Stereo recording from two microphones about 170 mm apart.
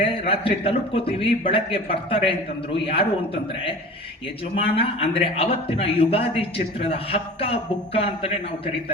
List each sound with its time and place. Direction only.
0.0 s a man's voice: 35° left (ahead or behind)
4.5 s a man's voice: 35° left (ahead or behind)